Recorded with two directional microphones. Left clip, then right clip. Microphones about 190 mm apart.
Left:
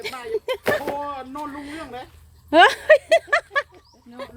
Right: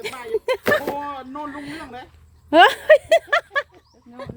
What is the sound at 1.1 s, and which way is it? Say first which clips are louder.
Speech: even; 35° right (ahead or behind).